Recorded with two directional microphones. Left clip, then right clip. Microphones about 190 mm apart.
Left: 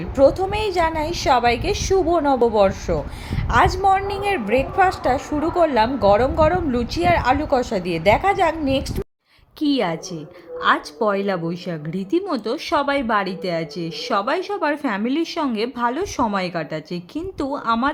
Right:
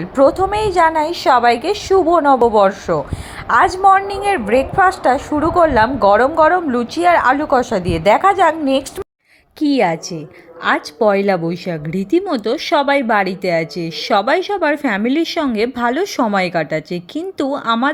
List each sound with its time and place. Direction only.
0.2 s a woman's voice: 15° right (ahead or behind)